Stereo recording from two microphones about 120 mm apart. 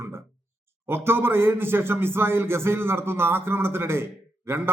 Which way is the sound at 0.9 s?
20° right (ahead or behind).